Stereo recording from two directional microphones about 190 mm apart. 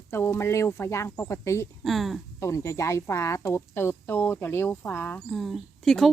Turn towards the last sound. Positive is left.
turn(degrees=0)  # may be behind; listen again after turning